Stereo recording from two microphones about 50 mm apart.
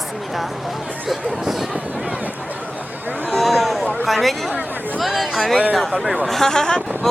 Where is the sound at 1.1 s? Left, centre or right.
Centre.